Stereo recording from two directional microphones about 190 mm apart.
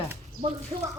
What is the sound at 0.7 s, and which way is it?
Speech, 30° right (ahead or behind).